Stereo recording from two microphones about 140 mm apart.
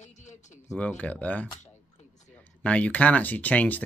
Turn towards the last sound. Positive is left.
turn(degrees=10)  # may be behind; listen again after turning